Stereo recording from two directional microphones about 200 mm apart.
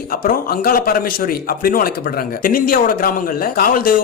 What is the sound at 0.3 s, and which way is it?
A man's voice, 45° left (ahead or behind).